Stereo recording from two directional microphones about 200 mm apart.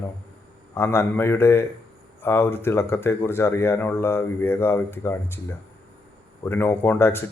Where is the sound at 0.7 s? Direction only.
15° left (ahead or behind).